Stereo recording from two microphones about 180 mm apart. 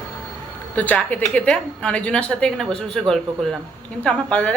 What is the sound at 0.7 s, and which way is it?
A woman's voice, 10° left (ahead or behind).